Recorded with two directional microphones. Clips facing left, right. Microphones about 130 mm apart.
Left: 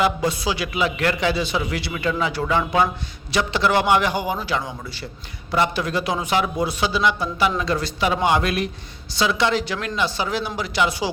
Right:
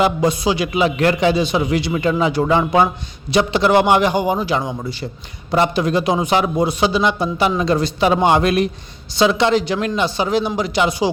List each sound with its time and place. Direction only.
0.0 s a man's voice: 20° right (ahead or behind)